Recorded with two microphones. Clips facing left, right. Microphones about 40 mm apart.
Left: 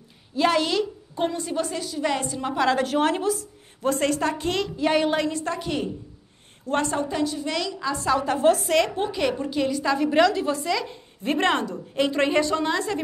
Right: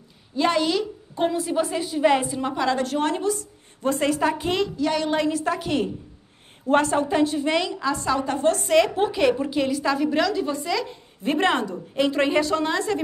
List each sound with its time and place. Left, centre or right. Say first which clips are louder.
0.4 s a woman's voice: even; centre
1.8 s a woman's voice: right 6 dB; right
2.4 s a woman's voice: left 1 dB; centre
4.7 s a woman's voice: left 2 dB; centre
5.1 s a woman's voice: right 2 dB; centre
7.8 s a woman's voice: even; centre